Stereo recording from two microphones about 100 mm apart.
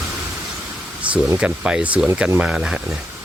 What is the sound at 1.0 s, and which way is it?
Speech, 10° right (ahead or behind).